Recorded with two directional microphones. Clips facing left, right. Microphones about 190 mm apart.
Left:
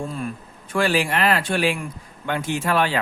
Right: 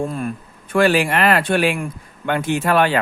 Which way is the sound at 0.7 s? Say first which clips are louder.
Right 5 dB; 60° right (ahead or behind).